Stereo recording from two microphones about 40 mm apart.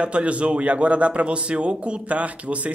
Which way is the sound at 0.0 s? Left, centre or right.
Right.